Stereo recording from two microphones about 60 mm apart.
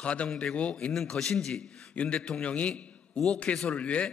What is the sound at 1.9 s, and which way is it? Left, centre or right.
A man's voice, centre.